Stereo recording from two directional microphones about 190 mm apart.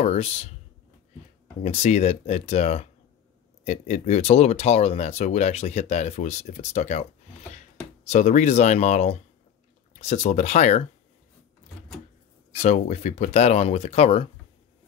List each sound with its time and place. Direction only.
0.0 s speech: 35° left (ahead or behind)
1.6 s speech: 35° left (ahead or behind)
8.1 s speech: 40° left (ahead or behind)
12.5 s speech: 35° left (ahead or behind)